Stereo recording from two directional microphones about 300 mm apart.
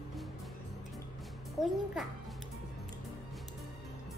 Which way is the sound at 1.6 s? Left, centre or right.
Centre.